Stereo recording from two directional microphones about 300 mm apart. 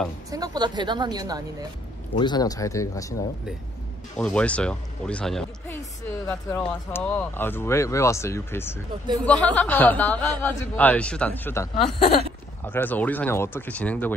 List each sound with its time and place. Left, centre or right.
0.3 s a woman's voice: centre
2.1 s speech: centre
4.2 s speech: centre